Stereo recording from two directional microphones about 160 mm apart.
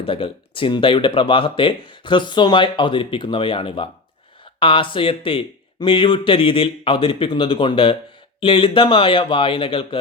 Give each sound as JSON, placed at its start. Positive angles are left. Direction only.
{"t": 0.0, "sound": "speech", "side_deg": 35}